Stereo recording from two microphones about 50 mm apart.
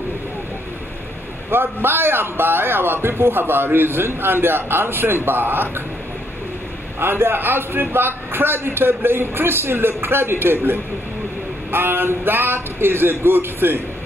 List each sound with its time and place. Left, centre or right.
1.5 s a man's voice: right
7.0 s a man's voice: right